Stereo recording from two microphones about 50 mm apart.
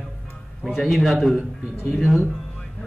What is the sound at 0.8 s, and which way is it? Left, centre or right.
Speech, centre.